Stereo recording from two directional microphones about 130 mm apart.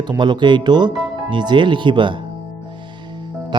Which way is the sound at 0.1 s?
35° right (ahead or behind).